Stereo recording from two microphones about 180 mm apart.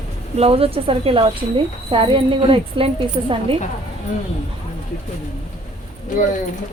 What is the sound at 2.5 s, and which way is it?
A woman's voice, 30° right (ahead or behind).